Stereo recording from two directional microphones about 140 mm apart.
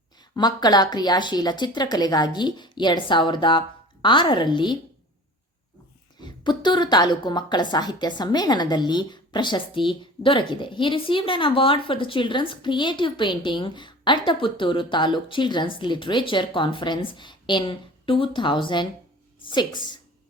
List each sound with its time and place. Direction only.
0.3 s a woman's voice: 30° left (ahead or behind)
6.1 s a woman's voice: 30° left (ahead or behind)